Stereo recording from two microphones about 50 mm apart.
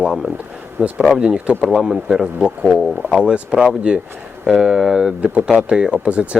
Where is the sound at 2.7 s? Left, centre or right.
Centre.